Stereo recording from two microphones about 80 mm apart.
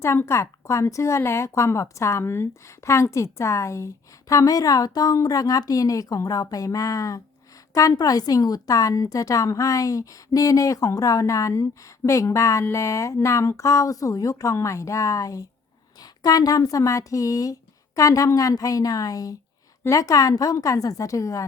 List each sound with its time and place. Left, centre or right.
0.0 s a woman's voice: left
16.0 s a woman's voice: left